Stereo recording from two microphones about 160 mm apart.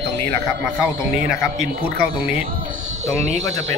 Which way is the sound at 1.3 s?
5° right (ahead or behind).